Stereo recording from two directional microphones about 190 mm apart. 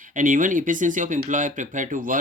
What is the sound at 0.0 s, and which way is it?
Speech, 45° right (ahead or behind).